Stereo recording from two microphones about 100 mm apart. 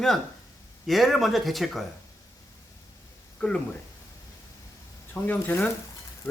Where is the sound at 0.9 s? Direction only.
Centre (ahead or behind).